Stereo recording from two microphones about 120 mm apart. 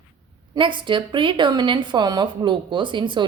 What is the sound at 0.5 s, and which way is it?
A woman's voice, 45° right (ahead or behind).